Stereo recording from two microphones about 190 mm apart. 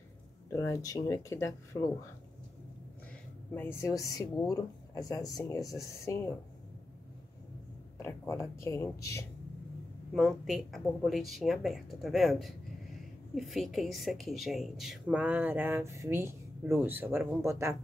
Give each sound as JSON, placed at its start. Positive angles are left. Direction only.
{"t": 0.5, "sound": "speech", "side_deg": 15}
{"t": 3.5, "sound": "speech", "side_deg": 15}
{"t": 8.0, "sound": "speech", "side_deg": 15}
{"t": 10.1, "sound": "speech", "side_deg": 0}